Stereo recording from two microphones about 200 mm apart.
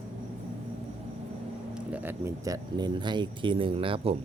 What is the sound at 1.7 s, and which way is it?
Speech, 10° right (ahead or behind).